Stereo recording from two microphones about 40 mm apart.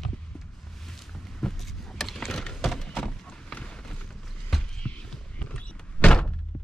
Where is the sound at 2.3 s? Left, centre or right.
Centre.